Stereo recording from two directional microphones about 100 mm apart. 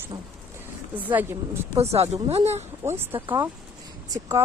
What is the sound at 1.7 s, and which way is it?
Speech, 90° right.